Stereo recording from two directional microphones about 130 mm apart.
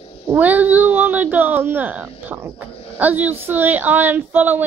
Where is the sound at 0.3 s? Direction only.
15° right (ahead or behind).